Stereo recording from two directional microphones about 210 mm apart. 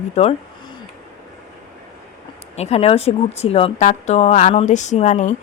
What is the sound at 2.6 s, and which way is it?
Speech, 30° left (ahead or behind).